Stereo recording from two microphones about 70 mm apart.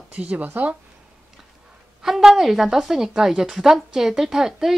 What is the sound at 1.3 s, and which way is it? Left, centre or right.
A woman's voice, centre.